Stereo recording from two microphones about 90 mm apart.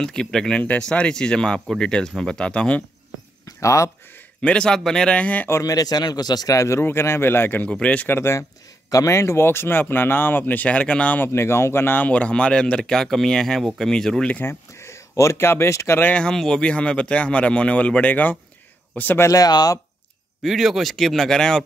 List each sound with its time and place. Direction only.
0.0 s speech: 5° left (ahead or behind)
3.4 s a sound: 35° left (ahead or behind)
4.4 s speech: 10° left (ahead or behind)
5.5 s speech: 40° left (ahead or behind); by 8.1 s 15° left (ahead or behind)
8.1 s speech: 30° left (ahead or behind)
11.2 s speech: 30° left (ahead or behind); by 14.4 s 10° left (ahead or behind)
14.4 s speech: 30° left (ahead or behind)
16.0 s speech: 10° left (ahead or behind)
19.2 s speech: 45° left (ahead or behind)
20.4 s speech: centre (ahead or behind)